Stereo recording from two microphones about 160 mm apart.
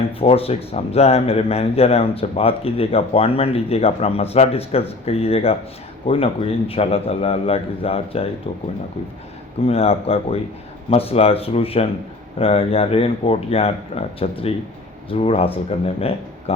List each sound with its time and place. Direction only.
0.2 s a man's voice: 40° left (ahead or behind)
9.6 s a man's voice: 40° left (ahead or behind)